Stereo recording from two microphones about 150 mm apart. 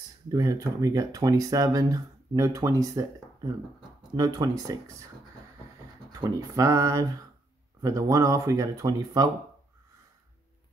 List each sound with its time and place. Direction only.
0.3 s speech: 25° right (ahead or behind)
4.1 s speech: 25° right (ahead or behind)
6.1 s speech: 25° right (ahead or behind)